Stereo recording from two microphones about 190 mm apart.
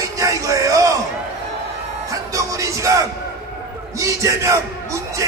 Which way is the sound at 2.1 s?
15° right (ahead or behind).